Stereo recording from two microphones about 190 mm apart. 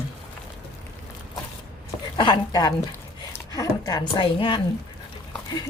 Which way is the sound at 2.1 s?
25° left (ahead or behind).